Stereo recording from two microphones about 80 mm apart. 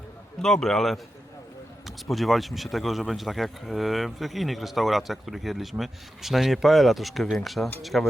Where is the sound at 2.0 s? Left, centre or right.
Centre.